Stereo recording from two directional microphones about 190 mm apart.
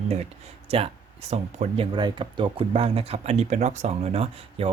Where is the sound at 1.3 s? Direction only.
35° right (ahead or behind).